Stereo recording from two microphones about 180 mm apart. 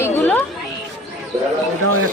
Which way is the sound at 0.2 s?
15° left (ahead or behind).